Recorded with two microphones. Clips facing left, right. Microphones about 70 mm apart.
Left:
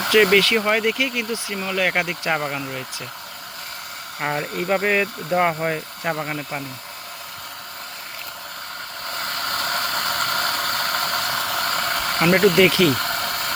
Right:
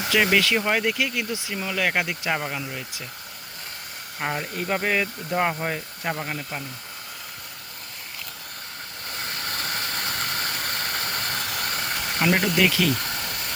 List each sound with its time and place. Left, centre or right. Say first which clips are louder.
0.1 s speech: left 5 dB; centre
2.3 s speech: left 4 dB; centre
4.2 s speech: left 4 dB; left
6.1 s speech: left 4 dB; centre
9.0 s engine: left 5 dB; left
12.9 s a sound: left 5 dB; left